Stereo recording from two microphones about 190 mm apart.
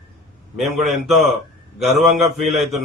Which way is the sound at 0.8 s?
Centre (ahead or behind).